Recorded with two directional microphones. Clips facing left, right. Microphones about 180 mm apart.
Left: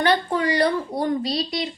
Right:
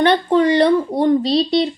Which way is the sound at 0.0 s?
25° right (ahead or behind).